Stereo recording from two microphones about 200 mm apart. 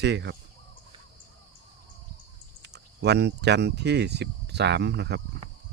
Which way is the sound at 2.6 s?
55° right (ahead or behind).